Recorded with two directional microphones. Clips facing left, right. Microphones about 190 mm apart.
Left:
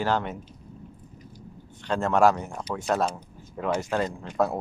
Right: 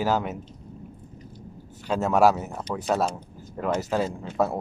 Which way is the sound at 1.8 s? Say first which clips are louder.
Right 1 dB; 5° right (ahead or behind).